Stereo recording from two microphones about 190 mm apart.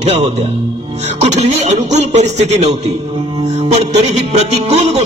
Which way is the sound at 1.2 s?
35° right (ahead or behind).